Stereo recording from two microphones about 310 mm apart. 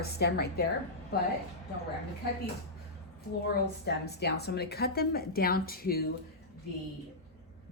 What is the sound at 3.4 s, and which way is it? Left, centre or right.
A woman's voice, left.